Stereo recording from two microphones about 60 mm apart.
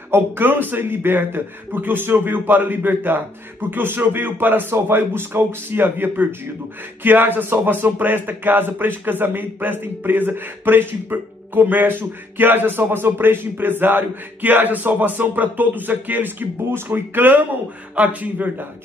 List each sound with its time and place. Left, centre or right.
0.1 s a man's voice: right